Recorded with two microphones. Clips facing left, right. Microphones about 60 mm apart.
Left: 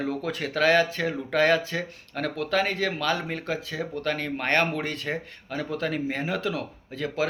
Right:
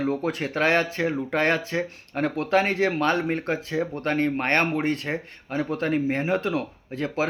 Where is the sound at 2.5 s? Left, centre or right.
Right.